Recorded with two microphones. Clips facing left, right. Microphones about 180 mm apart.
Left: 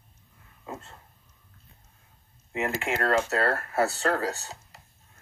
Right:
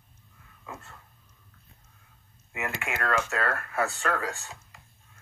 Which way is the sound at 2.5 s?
35° left (ahead or behind).